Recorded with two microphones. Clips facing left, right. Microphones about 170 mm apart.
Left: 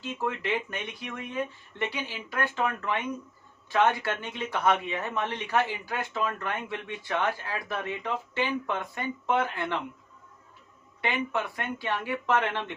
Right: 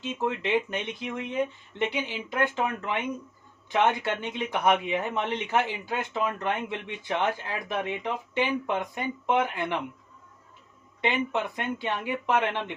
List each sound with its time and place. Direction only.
0.0 s speech: 20° right (ahead or behind)
11.0 s speech: 20° right (ahead or behind)